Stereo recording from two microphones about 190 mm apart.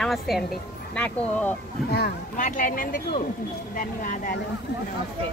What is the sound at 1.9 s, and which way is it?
Speech, 50° left (ahead or behind).